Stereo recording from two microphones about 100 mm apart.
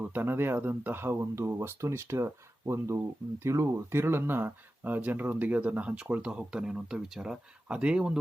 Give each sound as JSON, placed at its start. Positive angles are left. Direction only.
{"t": 0.0, "sound": "speech", "side_deg": -20}